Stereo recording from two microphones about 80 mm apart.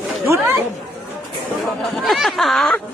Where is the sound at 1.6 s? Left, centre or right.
Centre.